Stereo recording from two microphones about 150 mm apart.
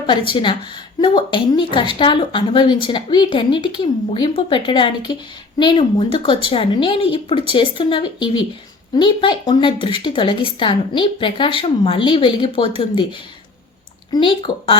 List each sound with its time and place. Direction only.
0.3 s a woman's voice: 30° left (ahead or behind)